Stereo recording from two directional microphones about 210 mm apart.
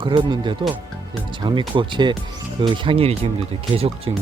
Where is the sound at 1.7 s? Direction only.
20° right (ahead or behind).